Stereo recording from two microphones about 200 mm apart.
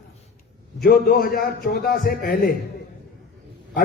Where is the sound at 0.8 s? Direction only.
45° left (ahead or behind).